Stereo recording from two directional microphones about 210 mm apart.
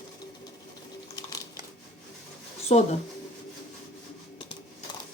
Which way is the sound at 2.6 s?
30° left (ahead or behind).